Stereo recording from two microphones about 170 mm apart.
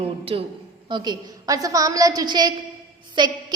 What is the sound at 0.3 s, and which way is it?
A woman's voice, 30° right (ahead or behind).